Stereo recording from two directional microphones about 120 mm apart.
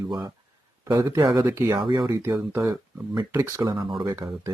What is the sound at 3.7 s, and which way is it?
Speech, 40° right (ahead or behind).